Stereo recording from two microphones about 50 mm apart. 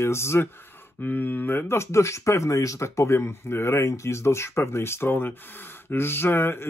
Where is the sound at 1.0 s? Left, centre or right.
Left.